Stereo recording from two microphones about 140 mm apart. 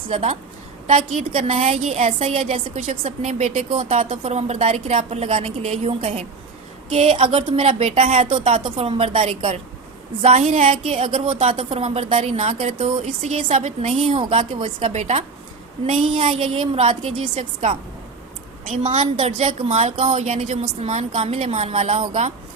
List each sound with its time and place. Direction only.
0.9 s speech: 50° right (ahead or behind)
2.7 s a woman's voice: 60° right (ahead or behind); by 14.9 s 40° right (ahead or behind)
14.9 s speech: 50° right (ahead or behind)
16.1 s a woman's voice: 40° right (ahead or behind)
19.1 s speech: 45° right (ahead or behind)